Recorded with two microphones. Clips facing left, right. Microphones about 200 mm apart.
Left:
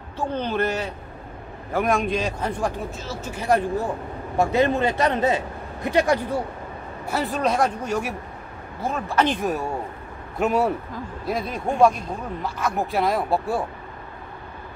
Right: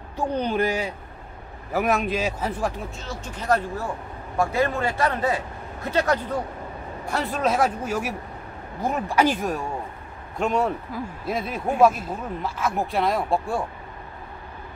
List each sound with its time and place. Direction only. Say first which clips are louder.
0.2 s a man's voice: right 1 dB; 15° right (ahead or behind)
8.8 s speech: right 1 dB; 15° right (ahead or behind); by 13.7 s 5° left (ahead or behind)